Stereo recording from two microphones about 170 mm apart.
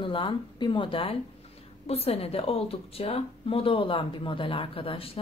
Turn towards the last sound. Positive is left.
turn(degrees=35)  # may be behind; listen again after turning